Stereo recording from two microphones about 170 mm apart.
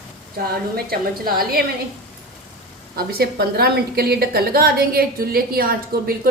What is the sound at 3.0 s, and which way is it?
A woman's voice, 65° right (ahead or behind).